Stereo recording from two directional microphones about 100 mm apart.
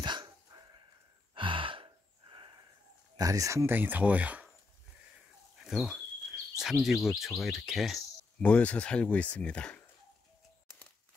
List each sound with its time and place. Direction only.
0.0 s dog: 50° right (ahead or behind)
1.3 s gasp: 60° right (ahead or behind)
3.2 s speech: 35° right (ahead or behind)
3.7 s speech: 15° right (ahead or behind)
5.6 s speech: 5° right (ahead or behind)
8.4 s speech: 15° left (ahead or behind)